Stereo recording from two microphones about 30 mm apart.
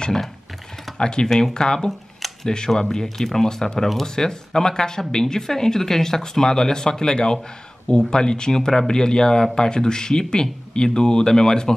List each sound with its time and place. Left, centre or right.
0.9 s speech: left; by 3.4 s centre
3.4 s speech: left
3.8 s speech: centre
4.1 s speech: left